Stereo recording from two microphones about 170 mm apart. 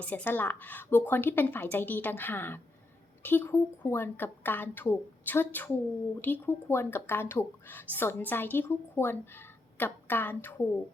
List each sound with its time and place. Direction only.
0.0 s a woman's voice: 10° left (ahead or behind)